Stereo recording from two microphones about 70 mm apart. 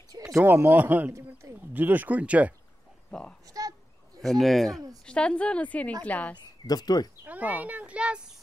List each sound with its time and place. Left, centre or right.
0.4 s a child's voice: right
3.1 s speech: centre
3.4 s a sound: right
4.2 s speech: centre
5.0 s speech: centre
6.3 s speech: left
7.2 s a child's voice: right